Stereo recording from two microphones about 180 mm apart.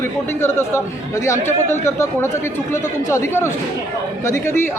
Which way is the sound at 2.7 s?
15° left (ahead or behind).